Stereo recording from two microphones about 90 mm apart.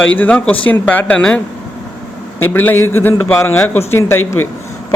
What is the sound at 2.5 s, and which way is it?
A man's voice, 25° left (ahead or behind).